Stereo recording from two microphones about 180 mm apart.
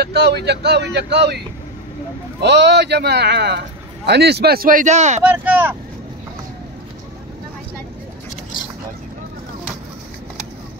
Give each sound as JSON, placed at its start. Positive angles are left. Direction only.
{"t": 0.0, "sound": "speech", "side_deg": -65}
{"t": 2.4, "sound": "a man's voice", "side_deg": -70}
{"t": 5.2, "sound": "speech", "side_deg": -10}